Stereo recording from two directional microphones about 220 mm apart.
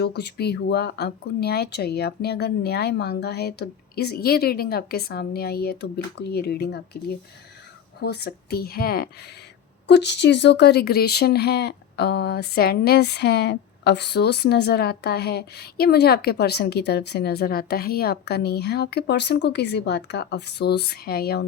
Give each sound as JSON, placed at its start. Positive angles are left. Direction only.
{"t": 0.0, "sound": "speech", "side_deg": 50}